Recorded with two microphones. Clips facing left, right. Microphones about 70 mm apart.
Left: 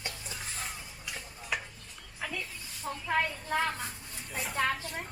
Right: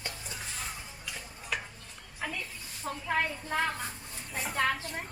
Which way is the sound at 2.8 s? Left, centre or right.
Centre.